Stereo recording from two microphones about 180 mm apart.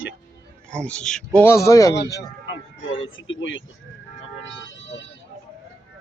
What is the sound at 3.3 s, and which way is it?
Speech, 90° left.